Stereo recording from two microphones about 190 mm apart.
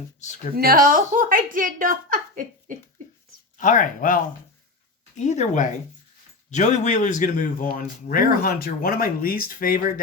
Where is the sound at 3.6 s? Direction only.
45° left (ahead or behind).